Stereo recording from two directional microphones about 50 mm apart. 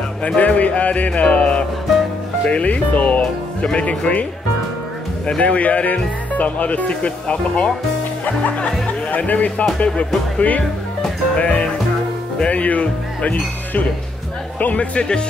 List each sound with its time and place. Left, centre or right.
0.2 s speech: left
5.4 s speech: left